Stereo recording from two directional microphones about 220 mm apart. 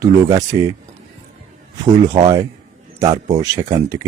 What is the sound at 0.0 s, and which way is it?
Speech, 15° right (ahead or behind).